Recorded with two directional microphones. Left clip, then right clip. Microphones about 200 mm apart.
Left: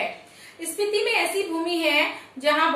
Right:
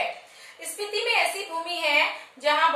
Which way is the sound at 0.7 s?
Centre (ahead or behind).